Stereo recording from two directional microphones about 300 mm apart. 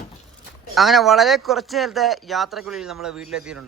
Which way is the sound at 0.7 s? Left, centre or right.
Centre.